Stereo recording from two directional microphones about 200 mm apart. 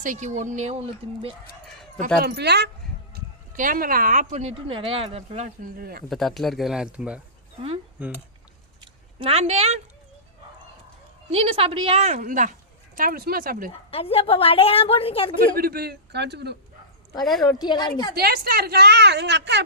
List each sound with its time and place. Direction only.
0.0 s speech: 40° right (ahead or behind)
2.2 s a woman's voice: 55° right (ahead or behind)
3.2 s speech: 45° right (ahead or behind)
5.6 s speech: 50° right (ahead or behind)
6.1 s speech: centre (ahead or behind)
8.8 s a sound: 25° right (ahead or behind)
11.3 s a woman's voice: 30° right (ahead or behind); by 13.7 s 45° right (ahead or behind)
13.9 s a woman's voice: 30° left (ahead or behind)
15.5 s speech: 50° right (ahead or behind)
17.2 s speech: centre (ahead or behind)
17.5 s a woman's voice: 20° left (ahead or behind)
18.2 s a woman's voice: 50° right (ahead or behind)